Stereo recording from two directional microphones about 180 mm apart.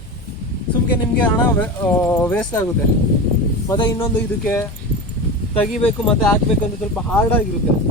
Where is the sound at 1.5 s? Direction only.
10° left (ahead or behind).